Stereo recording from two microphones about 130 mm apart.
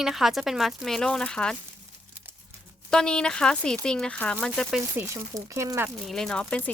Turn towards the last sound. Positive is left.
turn(degrees=5)  # may be behind; listen again after turning